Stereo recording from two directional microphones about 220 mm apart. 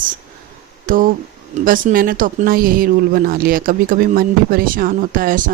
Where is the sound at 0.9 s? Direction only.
40° right (ahead or behind).